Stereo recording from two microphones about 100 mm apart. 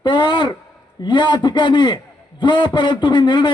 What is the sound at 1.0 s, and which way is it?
A man's voice, 50° left (ahead or behind).